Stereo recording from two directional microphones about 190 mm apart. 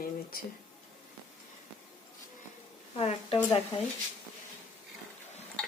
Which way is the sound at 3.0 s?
30° left (ahead or behind).